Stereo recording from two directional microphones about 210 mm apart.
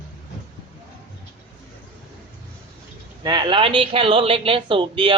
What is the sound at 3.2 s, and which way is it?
Speech, 20° right (ahead or behind).